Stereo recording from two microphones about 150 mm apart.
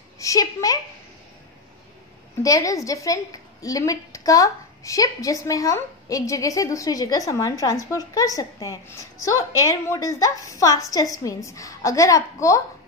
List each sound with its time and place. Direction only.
0.2 s a woman's voice: 20° left (ahead or behind)
2.4 s a woman's voice: 20° left (ahead or behind)